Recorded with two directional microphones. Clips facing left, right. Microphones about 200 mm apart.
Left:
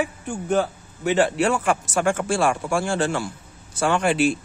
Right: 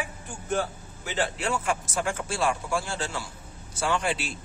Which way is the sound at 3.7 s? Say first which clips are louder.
Left 7 dB; 55° left (ahead or behind).